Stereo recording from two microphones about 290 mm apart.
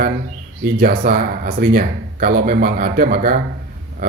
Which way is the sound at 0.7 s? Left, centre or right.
Right.